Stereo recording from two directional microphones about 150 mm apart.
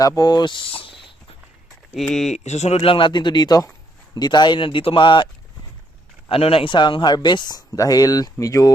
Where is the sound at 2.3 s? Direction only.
50° left (ahead or behind).